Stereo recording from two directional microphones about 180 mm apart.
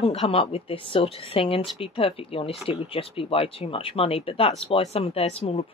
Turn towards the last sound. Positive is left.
turn(degrees=35)  # may be behind; listen again after turning